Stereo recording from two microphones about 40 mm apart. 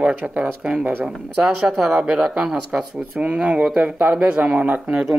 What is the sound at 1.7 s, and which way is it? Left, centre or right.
Speech, centre.